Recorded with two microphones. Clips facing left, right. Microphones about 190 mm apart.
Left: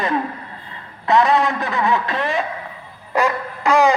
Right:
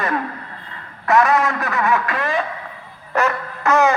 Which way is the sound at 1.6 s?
30° left (ahead or behind).